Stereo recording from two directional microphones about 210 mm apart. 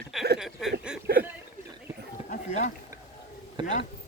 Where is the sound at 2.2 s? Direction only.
40° left (ahead or behind).